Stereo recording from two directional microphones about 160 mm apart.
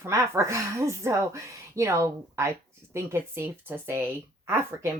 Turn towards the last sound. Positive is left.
turn(degrees=-15)  # may be behind; listen again after turning